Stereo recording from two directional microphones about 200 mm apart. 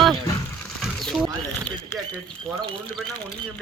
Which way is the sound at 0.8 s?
Centre (ahead or behind).